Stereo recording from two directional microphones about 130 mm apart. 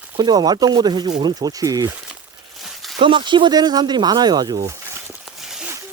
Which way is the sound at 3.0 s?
40° right (ahead or behind).